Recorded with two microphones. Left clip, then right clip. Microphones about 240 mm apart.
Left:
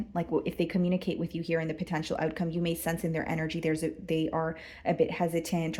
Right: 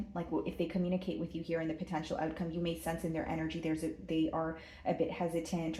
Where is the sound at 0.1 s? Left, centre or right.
Left.